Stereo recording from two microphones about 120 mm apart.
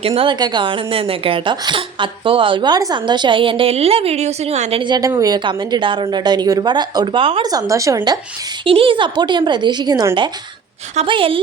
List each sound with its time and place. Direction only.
0.0 s a woman's voice: 50° right (ahead or behind)
0.3 s a woman's voice: 35° right (ahead or behind); by 4.8 s 65° right (ahead or behind)
4.8 s a woman's voice: 35° right (ahead or behind)
7.4 s a woman's voice: 30° right (ahead or behind)
8.6 s a woman's voice: 50° right (ahead or behind)
11.0 s a woman's voice: 45° right (ahead or behind)